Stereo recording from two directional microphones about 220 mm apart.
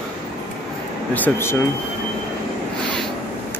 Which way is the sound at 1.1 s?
10° left (ahead or behind).